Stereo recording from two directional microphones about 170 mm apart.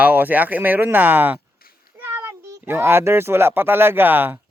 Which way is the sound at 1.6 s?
60° left (ahead or behind).